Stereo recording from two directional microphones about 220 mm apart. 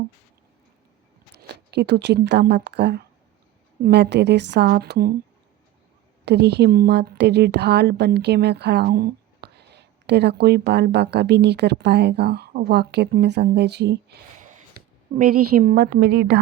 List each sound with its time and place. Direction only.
1.3 s a woman's voice: 50° right (ahead or behind)
6.2 s a woman's voice: 50° right (ahead or behind)
15.1 s a woman's voice: 30° right (ahead or behind)
15.4 s a woman's voice: 45° right (ahead or behind)